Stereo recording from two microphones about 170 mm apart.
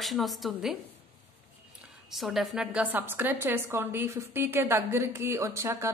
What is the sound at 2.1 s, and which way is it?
A woman's voice, centre (ahead or behind).